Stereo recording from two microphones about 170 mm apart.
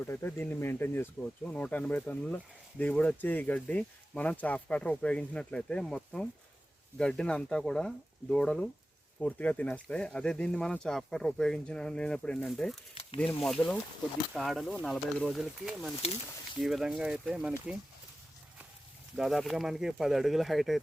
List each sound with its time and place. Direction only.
0.1 s speech: 15° left (ahead or behind)
12.9 s a sound: 30° left (ahead or behind)
13.1 s speech: centre (ahead or behind)
19.1 s speech: centre (ahead or behind)